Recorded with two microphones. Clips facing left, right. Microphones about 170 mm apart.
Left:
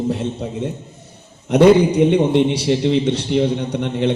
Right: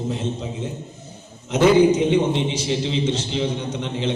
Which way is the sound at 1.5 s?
65° left (ahead or behind).